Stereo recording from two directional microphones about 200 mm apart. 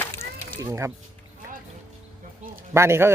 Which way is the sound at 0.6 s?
15° right (ahead or behind).